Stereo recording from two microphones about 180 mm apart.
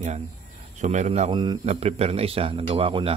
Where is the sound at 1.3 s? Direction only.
25° right (ahead or behind).